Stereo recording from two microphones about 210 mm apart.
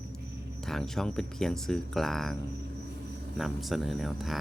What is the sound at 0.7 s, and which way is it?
Speech, centre (ahead or behind).